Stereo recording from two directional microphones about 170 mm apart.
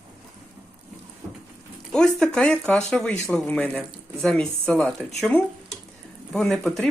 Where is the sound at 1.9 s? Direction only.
5° left (ahead or behind).